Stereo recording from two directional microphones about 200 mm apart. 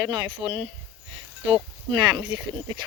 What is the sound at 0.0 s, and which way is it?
Speech, 20° right (ahead or behind).